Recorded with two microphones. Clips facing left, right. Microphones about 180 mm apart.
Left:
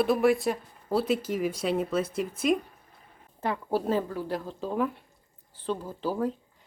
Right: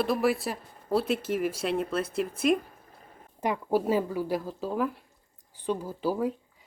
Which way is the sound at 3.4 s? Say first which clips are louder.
Right 2 dB; 15° right (ahead or behind).